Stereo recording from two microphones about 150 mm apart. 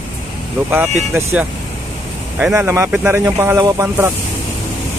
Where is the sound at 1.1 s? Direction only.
15° right (ahead or behind).